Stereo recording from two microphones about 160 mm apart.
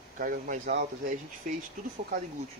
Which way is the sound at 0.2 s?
65° right (ahead or behind).